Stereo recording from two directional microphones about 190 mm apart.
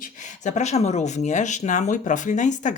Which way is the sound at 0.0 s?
40° left (ahead or behind).